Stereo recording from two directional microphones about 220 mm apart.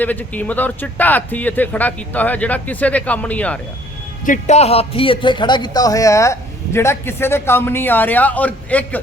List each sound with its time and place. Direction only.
0.0 s speech: 5° left (ahead or behind)
4.3 s speech: 30° left (ahead or behind); by 9.0 s 5° left (ahead or behind)